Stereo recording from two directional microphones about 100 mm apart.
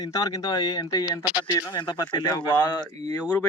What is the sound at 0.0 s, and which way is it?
Speech, 40° left (ahead or behind).